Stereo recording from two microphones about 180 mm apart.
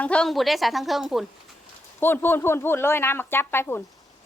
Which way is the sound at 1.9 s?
10° left (ahead or behind).